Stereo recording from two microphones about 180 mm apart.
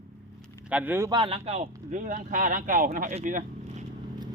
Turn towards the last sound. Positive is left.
turn(degrees=-45)  # may be behind; listen again after turning